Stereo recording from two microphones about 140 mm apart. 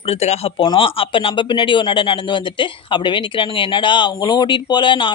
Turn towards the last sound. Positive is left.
turn(degrees=35)  # may be behind; listen again after turning